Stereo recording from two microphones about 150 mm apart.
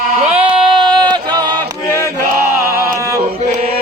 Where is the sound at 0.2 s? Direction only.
50° right (ahead or behind).